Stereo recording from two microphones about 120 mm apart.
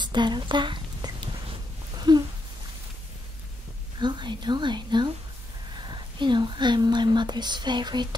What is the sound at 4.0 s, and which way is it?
Speech, 40° right (ahead or behind).